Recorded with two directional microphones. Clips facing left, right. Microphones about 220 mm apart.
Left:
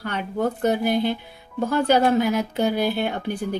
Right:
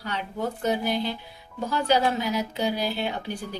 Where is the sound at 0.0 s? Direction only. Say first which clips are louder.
Left 6 dB; 55° left (ahead or behind).